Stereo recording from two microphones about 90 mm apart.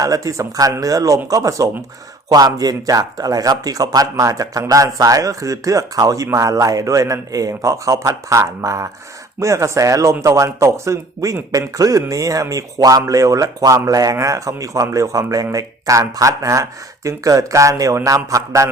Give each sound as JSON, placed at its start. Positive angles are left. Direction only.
{"t": 0.0, "sound": "a man's voice", "side_deg": -40}